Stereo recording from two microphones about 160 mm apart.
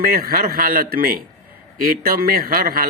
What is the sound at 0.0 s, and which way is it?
A man's voice, 65° right (ahead or behind).